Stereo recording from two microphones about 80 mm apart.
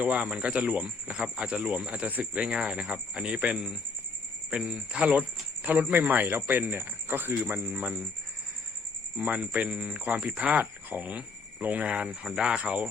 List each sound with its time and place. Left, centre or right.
0.0 s speech: centre
9.1 s speech: centre